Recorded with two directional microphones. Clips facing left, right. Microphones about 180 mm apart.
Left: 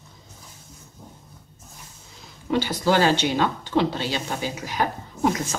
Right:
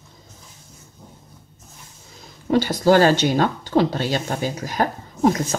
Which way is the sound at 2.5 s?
45° right (ahead or behind).